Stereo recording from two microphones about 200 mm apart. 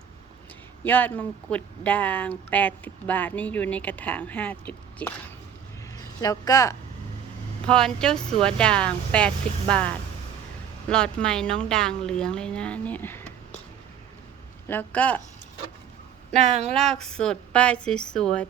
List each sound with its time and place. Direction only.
0.9 s speech: 10° left (ahead or behind)
5.9 s speech: 20° left (ahead or behind)
7.6 s speech: 5° left (ahead or behind)
14.7 s speech: 10° left (ahead or behind)
16.7 s speech: centre (ahead or behind)